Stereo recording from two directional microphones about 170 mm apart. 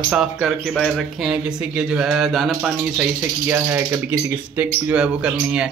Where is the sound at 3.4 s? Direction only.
15° right (ahead or behind).